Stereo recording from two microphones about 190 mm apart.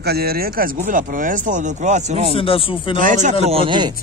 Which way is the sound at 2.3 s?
30° left (ahead or behind).